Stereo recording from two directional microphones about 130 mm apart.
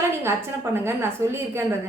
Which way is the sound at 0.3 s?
20° right (ahead or behind).